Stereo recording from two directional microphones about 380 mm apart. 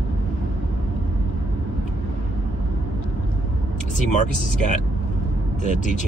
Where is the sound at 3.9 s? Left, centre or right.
Centre.